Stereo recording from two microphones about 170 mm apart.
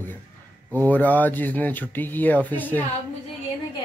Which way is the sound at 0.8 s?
10° left (ahead or behind).